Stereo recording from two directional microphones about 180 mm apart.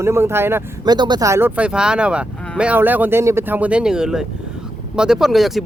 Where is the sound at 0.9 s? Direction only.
25° right (ahead or behind); by 5.6 s centre (ahead or behind).